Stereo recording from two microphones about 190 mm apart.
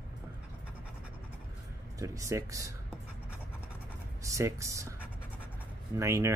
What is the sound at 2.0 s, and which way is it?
Speech, 15° right (ahead or behind).